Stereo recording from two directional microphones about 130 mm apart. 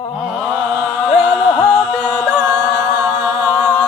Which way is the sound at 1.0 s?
Centre (ahead or behind).